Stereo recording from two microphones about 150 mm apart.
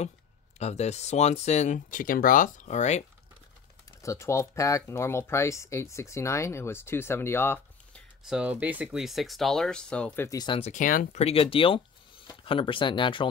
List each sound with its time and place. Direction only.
0.6 s speech: 45° left (ahead or behind)
4.0 s speech: 20° left (ahead or behind)
8.2 s speech: 5° right (ahead or behind); by 10.3 s 10° left (ahead or behind)
10.3 s speech: 30° left (ahead or behind)
10.6 s speech: 60° left (ahead or behind)
11.1 s speech: 40° left (ahead or behind)